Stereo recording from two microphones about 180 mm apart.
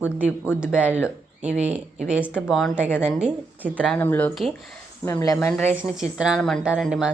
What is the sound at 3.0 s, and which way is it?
Speech, 5° right (ahead or behind).